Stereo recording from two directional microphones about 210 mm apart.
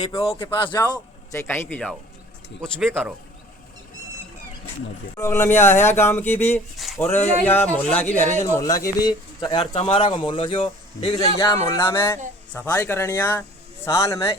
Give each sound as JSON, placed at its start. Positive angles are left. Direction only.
{"t": 0.3, "sound": "speech", "side_deg": 20}
{"t": 5.1, "sound": "speech", "side_deg": 10}
{"t": 6.7, "sound": "a sound", "side_deg": 0}
{"t": 7.4, "sound": "speech", "side_deg": 10}